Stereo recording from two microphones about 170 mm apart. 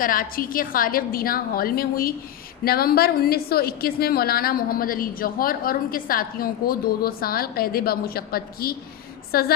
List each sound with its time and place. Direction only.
0.0 s a woman's voice: 55° left (ahead or behind)